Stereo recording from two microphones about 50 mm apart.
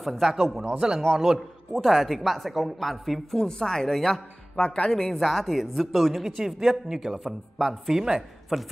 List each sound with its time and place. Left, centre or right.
0.0 s a man's voice: centre
3.3 s speech: centre
4.6 s speech: centre
4.9 s speech: centre